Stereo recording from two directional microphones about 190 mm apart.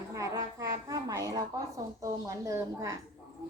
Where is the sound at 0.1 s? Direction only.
15° right (ahead or behind).